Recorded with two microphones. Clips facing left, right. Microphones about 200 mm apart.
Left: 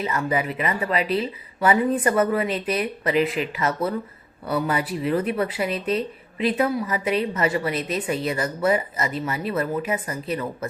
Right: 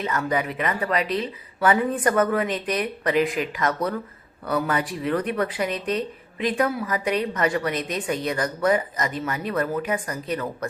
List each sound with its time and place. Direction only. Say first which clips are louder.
0.0 s a woman's voice: left 1 dB; 10° left (ahead or behind)